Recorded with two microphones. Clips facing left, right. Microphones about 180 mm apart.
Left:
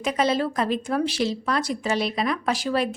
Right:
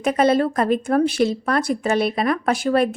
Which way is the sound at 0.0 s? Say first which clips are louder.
Right 6 dB; 55° right (ahead or behind).